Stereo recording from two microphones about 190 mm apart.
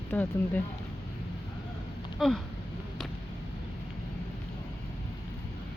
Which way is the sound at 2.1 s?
Centre (ahead or behind).